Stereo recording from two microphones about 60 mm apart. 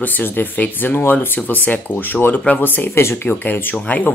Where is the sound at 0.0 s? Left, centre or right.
Left.